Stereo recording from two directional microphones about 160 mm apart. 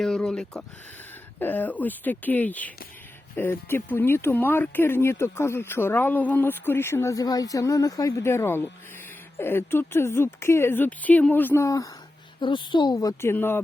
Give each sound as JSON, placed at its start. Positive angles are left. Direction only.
{"t": 0.0, "sound": "a woman's voice", "side_deg": 5}